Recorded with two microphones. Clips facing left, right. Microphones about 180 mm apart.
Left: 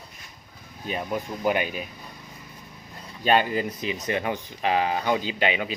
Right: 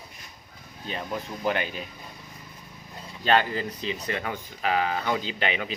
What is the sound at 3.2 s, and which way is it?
Speech, 15° left (ahead or behind).